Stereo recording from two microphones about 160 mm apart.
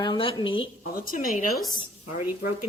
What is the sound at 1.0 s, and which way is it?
Speech, 60° left (ahead or behind).